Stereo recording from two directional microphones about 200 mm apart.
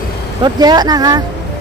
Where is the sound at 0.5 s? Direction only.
20° right (ahead or behind).